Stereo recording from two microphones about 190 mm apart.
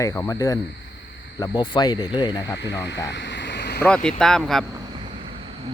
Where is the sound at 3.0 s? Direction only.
70° left (ahead or behind).